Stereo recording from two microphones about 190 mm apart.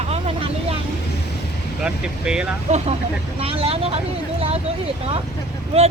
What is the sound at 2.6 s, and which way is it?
Speech, 35° right (ahead or behind).